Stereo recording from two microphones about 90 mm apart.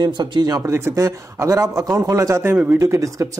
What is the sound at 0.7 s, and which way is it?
Speech, 30° right (ahead or behind).